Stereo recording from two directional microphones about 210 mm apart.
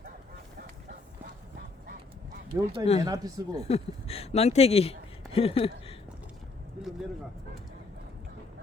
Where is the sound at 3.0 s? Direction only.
20° right (ahead or behind).